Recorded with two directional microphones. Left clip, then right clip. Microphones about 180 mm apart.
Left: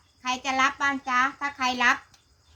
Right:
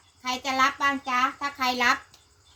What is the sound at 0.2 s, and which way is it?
A woman's voice, centre (ahead or behind).